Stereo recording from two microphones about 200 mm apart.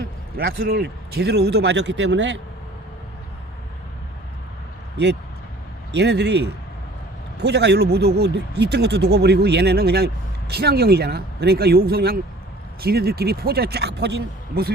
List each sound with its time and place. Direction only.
0.4 s speech: 50° right (ahead or behind); by 2.4 s 65° right (ahead or behind)
5.9 s speech: 60° right (ahead or behind)